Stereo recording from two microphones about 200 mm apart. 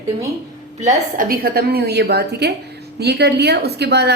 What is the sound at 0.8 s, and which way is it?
A woman's voice, 45° right (ahead or behind).